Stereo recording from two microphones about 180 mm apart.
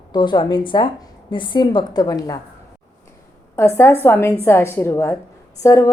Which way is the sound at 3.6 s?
15° left (ahead or behind).